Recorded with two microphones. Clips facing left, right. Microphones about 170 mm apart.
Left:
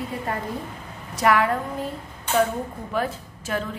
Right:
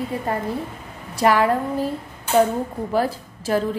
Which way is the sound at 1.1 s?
30° right (ahead or behind).